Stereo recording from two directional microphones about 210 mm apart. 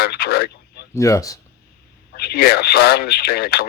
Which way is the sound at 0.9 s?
15° left (ahead or behind).